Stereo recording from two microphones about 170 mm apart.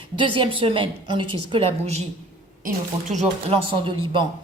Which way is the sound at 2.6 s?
45° right (ahead or behind).